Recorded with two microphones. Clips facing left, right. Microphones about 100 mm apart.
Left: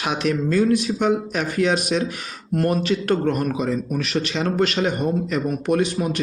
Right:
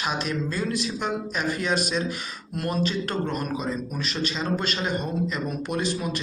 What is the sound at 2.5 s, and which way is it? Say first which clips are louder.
Speech: left 9 dB; 45° left (ahead or behind).